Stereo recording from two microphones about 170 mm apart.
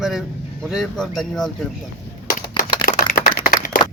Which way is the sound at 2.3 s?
55° left (ahead or behind).